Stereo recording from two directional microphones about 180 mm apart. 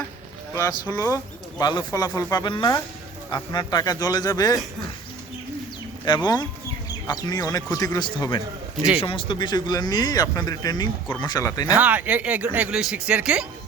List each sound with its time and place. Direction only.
0.5 s speech: 15° left (ahead or behind)
6.1 s speech: 25° left (ahead or behind)
11.7 s speech: 10° right (ahead or behind)